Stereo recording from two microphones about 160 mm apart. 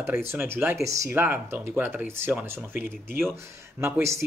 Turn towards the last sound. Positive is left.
turn(degrees=-15)  # may be behind; listen again after turning